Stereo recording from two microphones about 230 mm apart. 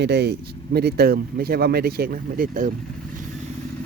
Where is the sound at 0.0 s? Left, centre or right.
Right.